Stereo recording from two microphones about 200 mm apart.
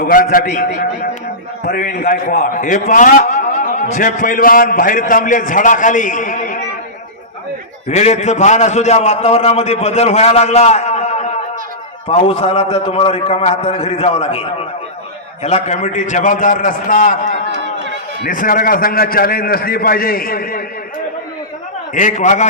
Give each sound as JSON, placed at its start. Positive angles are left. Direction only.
{"t": 0.0, "sound": "a man's voice", "side_deg": 45}
{"t": 7.9, "sound": "a man's voice", "side_deg": 35}
{"t": 15.4, "sound": "a man's voice", "side_deg": 35}
{"t": 21.9, "sound": "a man's voice", "side_deg": 40}